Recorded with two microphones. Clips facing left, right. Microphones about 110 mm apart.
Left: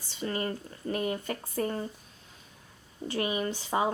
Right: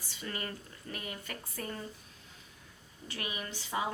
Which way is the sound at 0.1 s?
30° left (ahead or behind).